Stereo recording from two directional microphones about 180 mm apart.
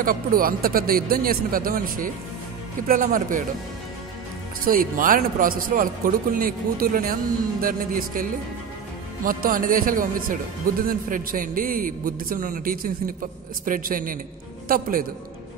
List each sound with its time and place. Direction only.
0.0 s a man's voice: 50° right (ahead or behind)
4.6 s a man's voice: 50° right (ahead or behind)